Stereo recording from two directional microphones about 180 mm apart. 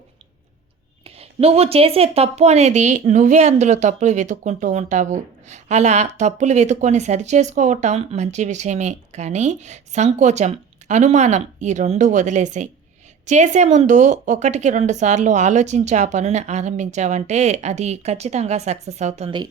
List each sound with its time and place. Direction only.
1.0 s a woman's voice: 35° right (ahead or behind)